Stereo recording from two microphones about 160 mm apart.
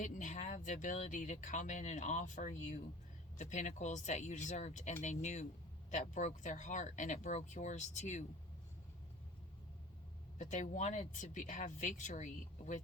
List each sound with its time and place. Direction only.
0.0 s speech: 50° left (ahead or behind)
10.3 s speech: 50° left (ahead or behind)